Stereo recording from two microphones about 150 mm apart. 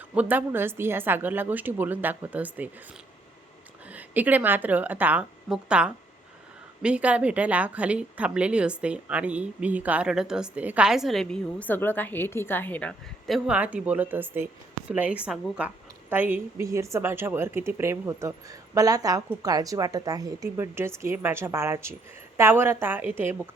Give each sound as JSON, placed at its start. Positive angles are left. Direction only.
{"t": 0.1, "sound": "a woman's voice", "side_deg": -10}
{"t": 3.9, "sound": "a woman's voice", "side_deg": -10}